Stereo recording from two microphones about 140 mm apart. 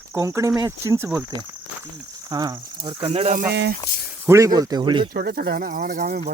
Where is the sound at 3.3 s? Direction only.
90° right.